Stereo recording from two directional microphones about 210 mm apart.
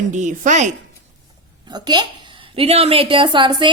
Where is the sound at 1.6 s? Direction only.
20° right (ahead or behind).